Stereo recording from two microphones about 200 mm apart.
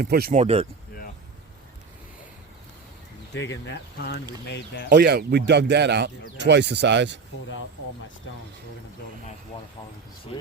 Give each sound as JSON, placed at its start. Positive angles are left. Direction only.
{"t": 0.0, "sound": "speech", "side_deg": -50}
{"t": 0.3, "sound": "speech", "side_deg": -30}
{"t": 3.3, "sound": "speech", "side_deg": 60}
{"t": 4.9, "sound": "speech", "side_deg": -55}
{"t": 10.3, "sound": "speech", "side_deg": 30}